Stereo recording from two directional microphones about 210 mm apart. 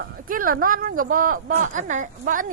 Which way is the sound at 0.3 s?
40° right (ahead or behind).